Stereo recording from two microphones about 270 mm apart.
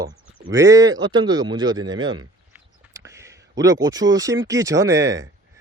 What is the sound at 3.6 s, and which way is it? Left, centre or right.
Speech, centre.